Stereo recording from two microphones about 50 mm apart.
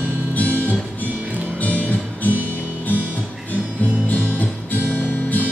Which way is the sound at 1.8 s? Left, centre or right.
Left.